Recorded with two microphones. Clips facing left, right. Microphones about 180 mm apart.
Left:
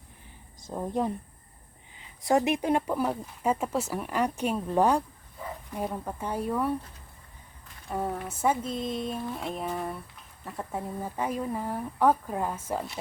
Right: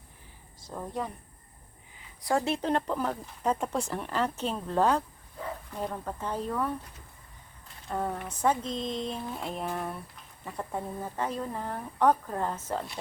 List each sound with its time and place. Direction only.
0.7 s a woman's voice: 20° left (ahead or behind)
7.9 s a sound: 5° left (ahead or behind)
10.4 s speech: centre (ahead or behind)